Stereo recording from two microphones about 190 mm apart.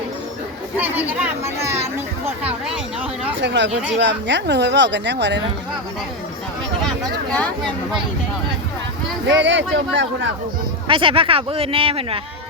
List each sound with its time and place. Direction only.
0.8 s speech: 10° right (ahead or behind)
3.4 s a woman's voice: 70° right (ahead or behind)
3.7 s speech: 5° right (ahead or behind)
3.9 s a woman's voice: 65° right (ahead or behind)
6.8 s speech: 5° left (ahead or behind)
9.2 s a woman's voice: 70° right (ahead or behind)
10.8 s speech: 30° right (ahead or behind)